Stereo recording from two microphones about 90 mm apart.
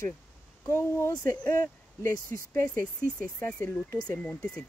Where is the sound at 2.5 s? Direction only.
20° left (ahead or behind).